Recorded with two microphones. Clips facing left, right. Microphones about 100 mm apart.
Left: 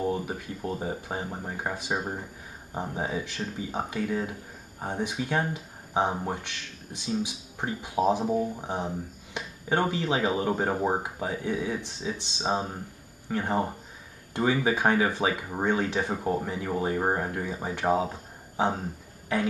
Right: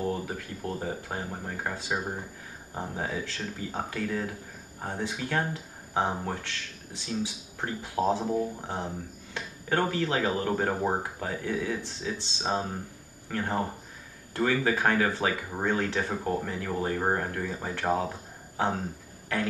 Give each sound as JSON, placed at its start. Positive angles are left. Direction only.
{"t": 0.0, "sound": "speech", "side_deg": 15}